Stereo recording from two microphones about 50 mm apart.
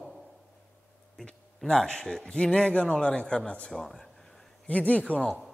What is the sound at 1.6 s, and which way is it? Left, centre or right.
A man's voice, centre.